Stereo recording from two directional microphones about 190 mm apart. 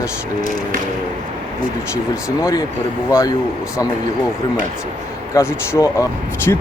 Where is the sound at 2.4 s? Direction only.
20° left (ahead or behind).